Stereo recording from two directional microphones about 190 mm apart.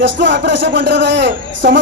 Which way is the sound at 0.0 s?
70° right (ahead or behind).